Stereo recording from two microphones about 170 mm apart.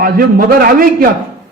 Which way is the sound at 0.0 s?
60° right (ahead or behind).